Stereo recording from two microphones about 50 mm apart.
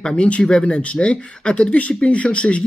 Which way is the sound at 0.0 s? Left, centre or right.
Left.